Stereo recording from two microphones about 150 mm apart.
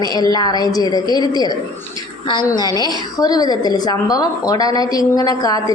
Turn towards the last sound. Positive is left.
turn(degrees=25)  # may be behind; listen again after turning